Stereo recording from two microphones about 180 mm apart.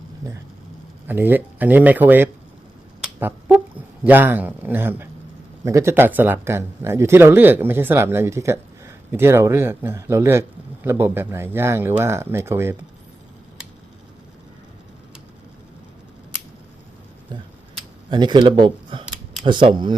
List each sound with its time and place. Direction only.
1.0 s speech: 10° right (ahead or behind)
3.0 s finger snapping: 10° right (ahead or behind)
4.0 s speech: 10° right (ahead or behind)
18.1 s speech: 25° right (ahead or behind)